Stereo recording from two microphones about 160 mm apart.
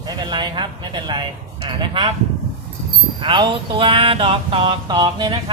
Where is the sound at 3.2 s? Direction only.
30° right (ahead or behind).